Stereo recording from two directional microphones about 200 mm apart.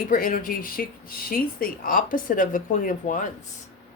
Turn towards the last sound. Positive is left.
turn(degrees=40)  # may be behind; listen again after turning